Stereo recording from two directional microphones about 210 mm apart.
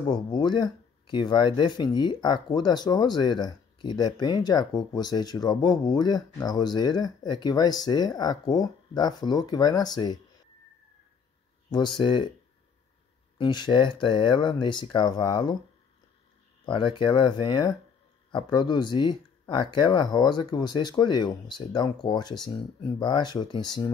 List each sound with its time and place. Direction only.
0.1 s speech: 20° left (ahead or behind)
11.7 s speech: 20° left (ahead or behind)
13.4 s speech: 20° left (ahead or behind)
16.6 s speech: 20° left (ahead or behind)